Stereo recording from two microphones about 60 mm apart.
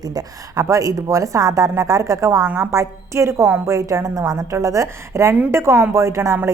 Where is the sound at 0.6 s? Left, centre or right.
Right.